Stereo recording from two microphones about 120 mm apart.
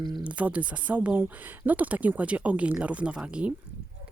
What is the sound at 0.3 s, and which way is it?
Speech, 10° right (ahead or behind).